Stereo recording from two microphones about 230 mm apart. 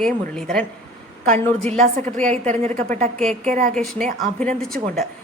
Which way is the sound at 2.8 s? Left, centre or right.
Right.